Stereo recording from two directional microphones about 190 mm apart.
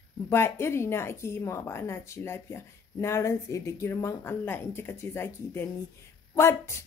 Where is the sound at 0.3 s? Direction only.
15° left (ahead or behind).